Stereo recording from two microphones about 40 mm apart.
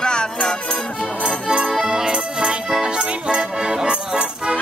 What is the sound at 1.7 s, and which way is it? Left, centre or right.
Accordion, centre.